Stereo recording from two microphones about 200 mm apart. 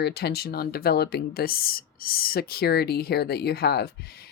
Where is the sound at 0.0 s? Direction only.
55° left (ahead or behind).